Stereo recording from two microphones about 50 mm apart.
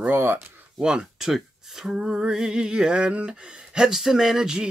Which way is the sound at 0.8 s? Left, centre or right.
Centre.